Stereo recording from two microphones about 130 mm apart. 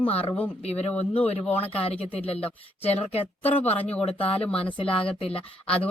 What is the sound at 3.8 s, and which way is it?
Speech, 10° left (ahead or behind).